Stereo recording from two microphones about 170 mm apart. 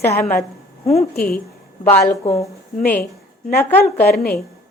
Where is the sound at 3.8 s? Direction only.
65° left (ahead or behind).